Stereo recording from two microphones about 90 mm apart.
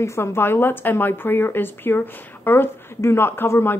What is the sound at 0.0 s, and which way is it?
Speech, 30° left (ahead or behind).